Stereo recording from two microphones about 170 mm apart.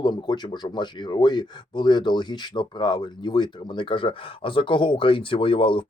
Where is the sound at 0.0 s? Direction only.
25° left (ahead or behind).